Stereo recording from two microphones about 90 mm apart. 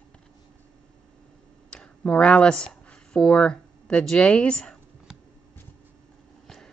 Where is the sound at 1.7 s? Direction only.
10° left (ahead or behind).